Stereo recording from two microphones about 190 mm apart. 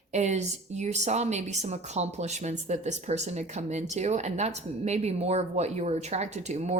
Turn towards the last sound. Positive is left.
turn(degrees=-35)  # may be behind; listen again after turning